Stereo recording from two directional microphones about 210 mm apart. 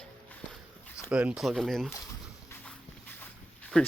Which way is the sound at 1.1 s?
5° right (ahead or behind).